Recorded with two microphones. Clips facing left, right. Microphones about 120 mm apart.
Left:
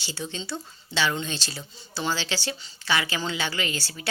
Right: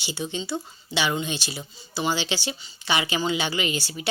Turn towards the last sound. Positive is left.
turn(degrees=-15)  # may be behind; listen again after turning